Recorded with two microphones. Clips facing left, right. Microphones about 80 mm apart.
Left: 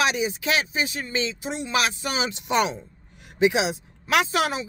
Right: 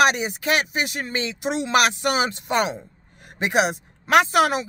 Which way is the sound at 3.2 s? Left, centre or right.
Right.